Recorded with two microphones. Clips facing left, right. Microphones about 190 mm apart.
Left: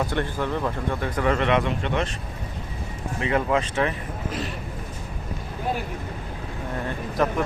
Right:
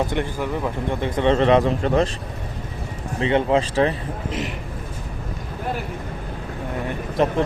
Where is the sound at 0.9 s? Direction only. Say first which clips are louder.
Right 6 dB; 25° right (ahead or behind).